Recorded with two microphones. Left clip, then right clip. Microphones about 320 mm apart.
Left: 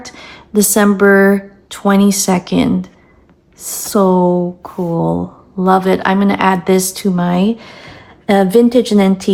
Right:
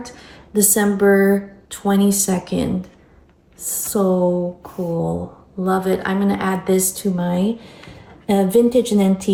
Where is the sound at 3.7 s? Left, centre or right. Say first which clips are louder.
Left 3 dB; centre.